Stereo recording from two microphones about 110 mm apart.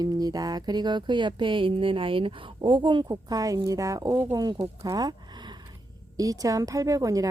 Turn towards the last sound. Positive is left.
turn(degrees=-30)  # may be behind; listen again after turning